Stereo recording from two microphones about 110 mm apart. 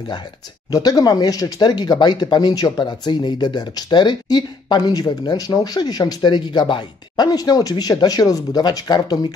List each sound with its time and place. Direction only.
0.7 s speech: 35° left (ahead or behind)